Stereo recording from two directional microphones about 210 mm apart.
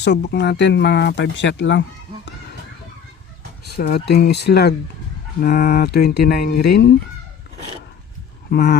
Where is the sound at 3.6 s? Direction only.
50° left (ahead or behind).